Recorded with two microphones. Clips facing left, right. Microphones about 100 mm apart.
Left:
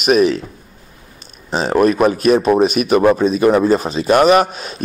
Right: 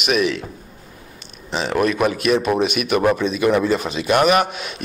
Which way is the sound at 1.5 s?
40° left (ahead or behind).